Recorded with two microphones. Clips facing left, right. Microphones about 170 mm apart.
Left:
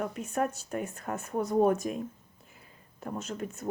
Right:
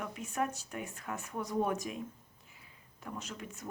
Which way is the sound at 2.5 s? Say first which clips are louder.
Left 4 dB; 50° left (ahead or behind).